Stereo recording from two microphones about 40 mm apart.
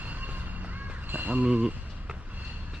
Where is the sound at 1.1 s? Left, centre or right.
Right.